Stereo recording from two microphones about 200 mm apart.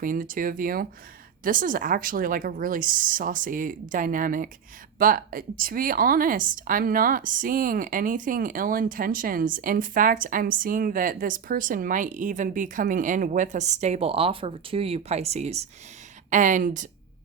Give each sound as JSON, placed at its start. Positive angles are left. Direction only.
{"t": 0.0, "sound": "speech", "side_deg": -40}